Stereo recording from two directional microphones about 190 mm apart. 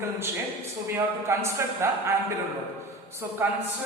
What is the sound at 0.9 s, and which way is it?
A man's voice, 15° right (ahead or behind).